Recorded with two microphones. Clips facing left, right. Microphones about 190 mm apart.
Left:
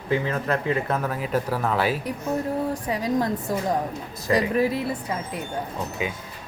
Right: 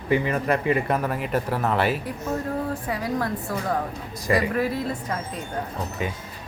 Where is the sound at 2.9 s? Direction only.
20° left (ahead or behind).